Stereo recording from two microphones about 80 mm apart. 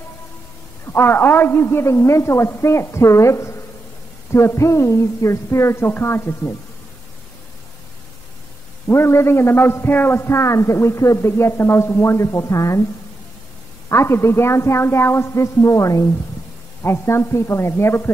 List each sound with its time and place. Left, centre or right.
0.9 s a man's voice: left
8.8 s a man's voice: left
13.8 s a man's voice: left